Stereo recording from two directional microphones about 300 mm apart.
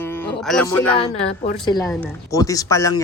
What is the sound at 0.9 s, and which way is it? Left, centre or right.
Speech, centre.